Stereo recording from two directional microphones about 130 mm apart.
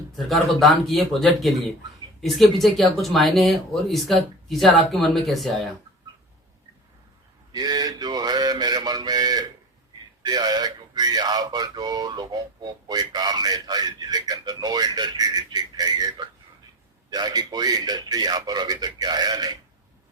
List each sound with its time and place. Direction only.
0.2 s speech: centre (ahead or behind)
7.5 s mantra: 30° right (ahead or behind)
10.2 s a man's voice: 30° right (ahead or behind)